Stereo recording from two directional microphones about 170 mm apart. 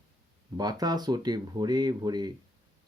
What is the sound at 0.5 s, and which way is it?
Speech, 25° right (ahead or behind).